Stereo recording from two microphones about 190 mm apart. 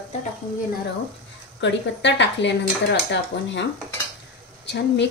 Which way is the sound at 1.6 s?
65° left (ahead or behind).